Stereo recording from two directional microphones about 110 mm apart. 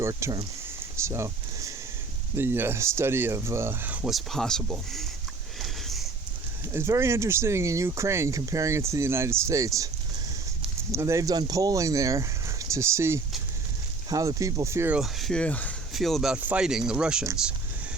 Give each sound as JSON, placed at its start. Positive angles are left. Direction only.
{"t": 0.0, "sound": "speech", "side_deg": -25}
{"t": 0.9, "sound": "a sound", "side_deg": -25}
{"t": 2.3, "sound": "speech", "side_deg": -20}
{"t": 4.1, "sound": "speech", "side_deg": 5}
{"t": 5.5, "sound": "sniff", "side_deg": 0}
{"t": 6.7, "sound": "speech", "side_deg": -25}
{"t": 10.9, "sound": "speech", "side_deg": -25}
{"t": 15.0, "sound": "speech", "side_deg": 5}
{"t": 15.9, "sound": "speech", "side_deg": 0}
{"t": 16.3, "sound": "speech", "side_deg": -10}